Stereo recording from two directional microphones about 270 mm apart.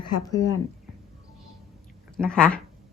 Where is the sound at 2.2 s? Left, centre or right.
Centre.